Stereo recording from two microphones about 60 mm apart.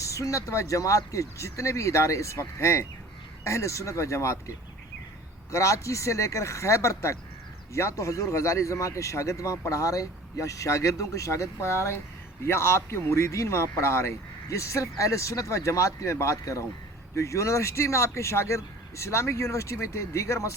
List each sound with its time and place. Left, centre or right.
0.0 s speech: left